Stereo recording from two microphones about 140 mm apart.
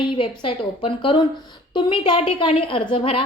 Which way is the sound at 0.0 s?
35° left (ahead or behind).